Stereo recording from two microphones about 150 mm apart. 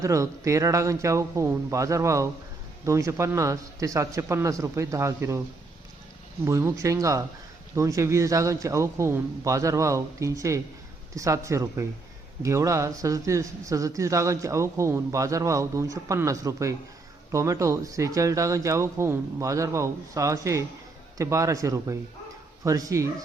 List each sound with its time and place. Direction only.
0.0 s speech: 20° right (ahead or behind)
6.4 s speech: 20° right (ahead or behind)